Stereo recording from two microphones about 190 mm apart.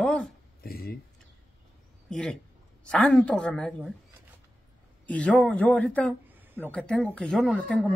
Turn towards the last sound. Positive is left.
turn(degrees=5)  # may be behind; listen again after turning